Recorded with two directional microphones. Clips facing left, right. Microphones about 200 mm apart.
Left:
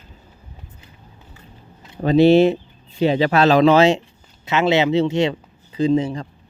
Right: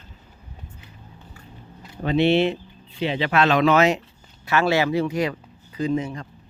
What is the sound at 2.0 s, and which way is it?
Speech, 40° left (ahead or behind).